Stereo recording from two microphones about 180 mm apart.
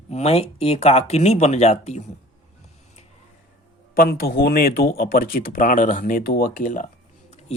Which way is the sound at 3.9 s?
55° left (ahead or behind).